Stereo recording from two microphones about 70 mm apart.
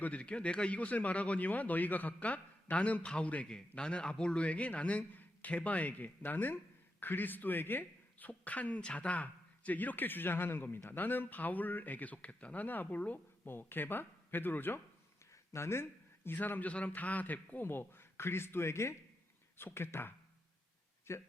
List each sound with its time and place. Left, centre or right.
0.0 s a man's voice: centre; by 21.2 s left